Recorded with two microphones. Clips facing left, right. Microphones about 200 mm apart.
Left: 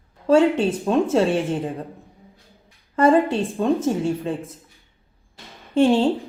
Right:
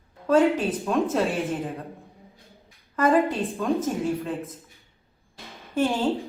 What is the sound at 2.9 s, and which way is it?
A woman's voice, 30° left (ahead or behind).